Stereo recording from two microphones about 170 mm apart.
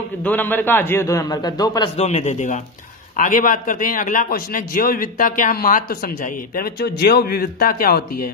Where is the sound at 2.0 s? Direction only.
40° left (ahead or behind).